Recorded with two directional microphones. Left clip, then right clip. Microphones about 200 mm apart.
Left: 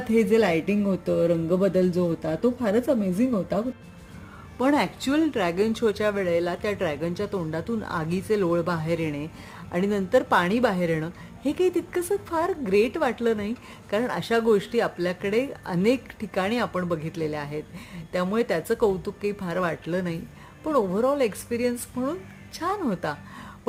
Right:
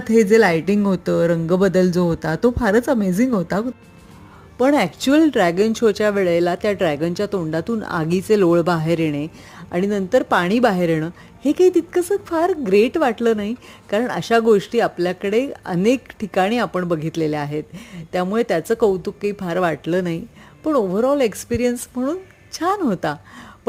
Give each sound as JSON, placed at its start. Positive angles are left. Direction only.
{"t": 0.3, "sound": "speech", "side_deg": -30}
{"t": 4.5, "sound": "speech", "side_deg": -25}